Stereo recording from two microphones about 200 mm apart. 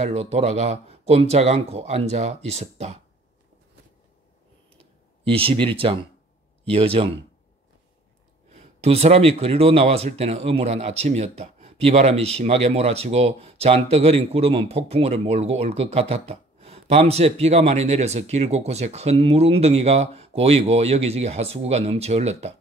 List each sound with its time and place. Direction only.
0.0 s speech: 35° right (ahead or behind)
5.2 s speech: 30° right (ahead or behind)
8.8 s speech: 30° right (ahead or behind)